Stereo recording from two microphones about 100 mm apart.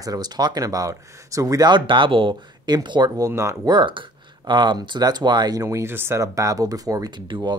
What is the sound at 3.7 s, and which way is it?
Speech, 55° right (ahead or behind).